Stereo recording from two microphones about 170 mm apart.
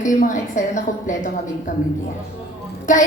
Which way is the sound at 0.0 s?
45° left (ahead or behind).